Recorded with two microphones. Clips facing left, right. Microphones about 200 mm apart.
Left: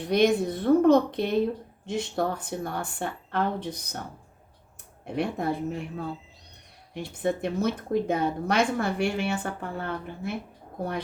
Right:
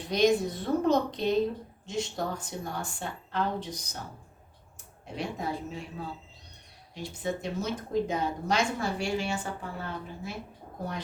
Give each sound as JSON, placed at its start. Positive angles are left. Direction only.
{"t": 0.1, "sound": "speech", "side_deg": 55}
{"t": 5.0, "sound": "speech", "side_deg": 55}